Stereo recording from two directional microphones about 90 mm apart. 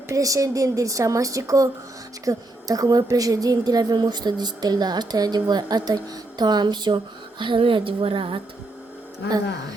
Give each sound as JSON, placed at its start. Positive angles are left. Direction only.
{"t": 0.1, "sound": "a woman's voice", "side_deg": -40}